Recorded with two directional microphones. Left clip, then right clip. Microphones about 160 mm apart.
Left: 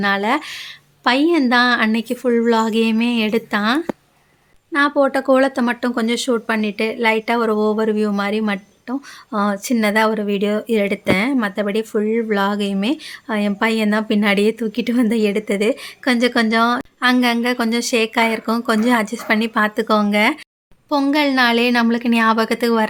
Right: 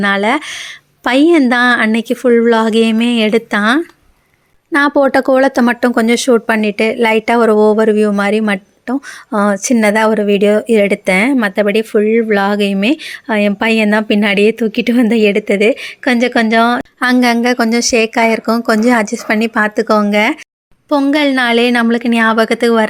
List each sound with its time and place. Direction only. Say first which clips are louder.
0.0 s speech: right 5 dB; 30° right (ahead or behind)
4.7 s speech: right 6 dB; 45° right (ahead or behind); by 16.8 s 25° right (ahead or behind)
17.0 s speech: right 5 dB; 35° right (ahead or behind)